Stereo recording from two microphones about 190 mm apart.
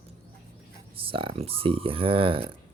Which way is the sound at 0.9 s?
30° right (ahead or behind).